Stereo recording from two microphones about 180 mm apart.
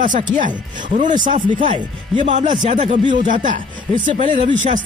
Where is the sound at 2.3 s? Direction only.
45° right (ahead or behind).